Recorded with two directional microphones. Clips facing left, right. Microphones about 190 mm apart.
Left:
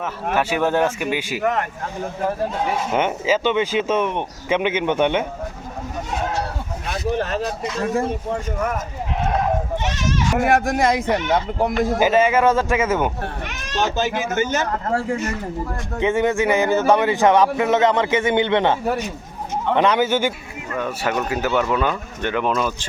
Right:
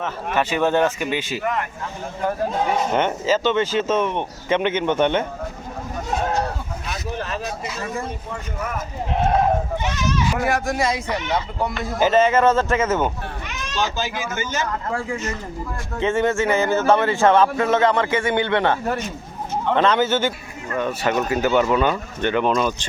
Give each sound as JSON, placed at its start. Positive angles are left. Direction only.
{"t": 0.3, "sound": "speech", "side_deg": 5}
{"t": 1.4, "sound": "speech", "side_deg": 45}
{"t": 2.9, "sound": "speech", "side_deg": 10}
{"t": 7.2, "sound": "speech", "side_deg": 55}
{"t": 10.3, "sound": "speech", "side_deg": 55}
{"t": 11.9, "sound": "speech", "side_deg": 10}
{"t": 13.5, "sound": "speech", "side_deg": 55}
{"t": 16.0, "sound": "speech", "side_deg": 15}